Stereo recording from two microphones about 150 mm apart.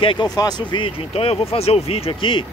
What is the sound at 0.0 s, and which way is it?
Speech, 35° left (ahead or behind).